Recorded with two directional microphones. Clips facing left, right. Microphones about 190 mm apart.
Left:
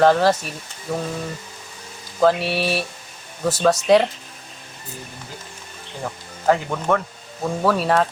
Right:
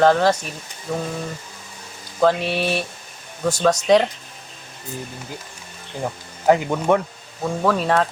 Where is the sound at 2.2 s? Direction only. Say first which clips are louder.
Even; centre (ahead or behind).